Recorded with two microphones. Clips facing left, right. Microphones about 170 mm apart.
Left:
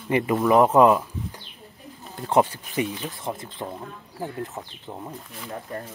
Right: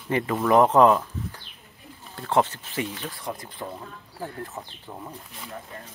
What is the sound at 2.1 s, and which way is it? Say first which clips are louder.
Speech: left 2 dB; 20° left (ahead or behind).